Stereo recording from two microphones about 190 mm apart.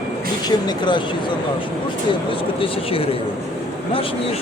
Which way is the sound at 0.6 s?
25° left (ahead or behind).